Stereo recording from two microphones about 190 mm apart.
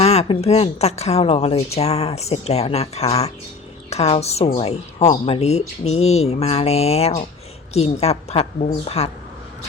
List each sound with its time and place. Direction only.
0.0 s a woman's voice: 35° left (ahead or behind)